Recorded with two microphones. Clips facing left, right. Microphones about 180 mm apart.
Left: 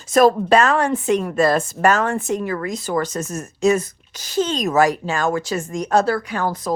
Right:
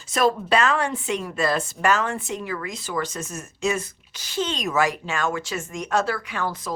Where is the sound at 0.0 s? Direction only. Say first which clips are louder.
Left 7 dB; 45° left (ahead or behind).